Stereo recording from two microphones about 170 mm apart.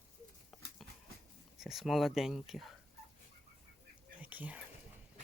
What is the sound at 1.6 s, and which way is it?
Speech, centre (ahead or behind).